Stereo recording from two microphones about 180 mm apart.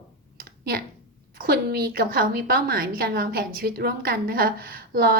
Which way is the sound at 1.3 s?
55° right (ahead or behind).